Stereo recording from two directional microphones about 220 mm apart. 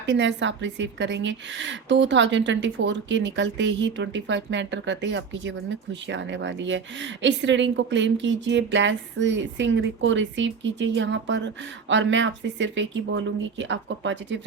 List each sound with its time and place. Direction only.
0.0 s a woman's voice: 55° right (ahead or behind)